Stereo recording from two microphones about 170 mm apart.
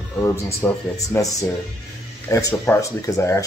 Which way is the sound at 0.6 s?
20° left (ahead or behind).